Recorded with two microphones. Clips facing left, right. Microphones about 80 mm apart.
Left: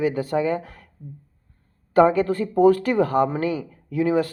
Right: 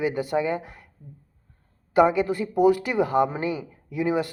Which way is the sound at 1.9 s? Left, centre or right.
Centre.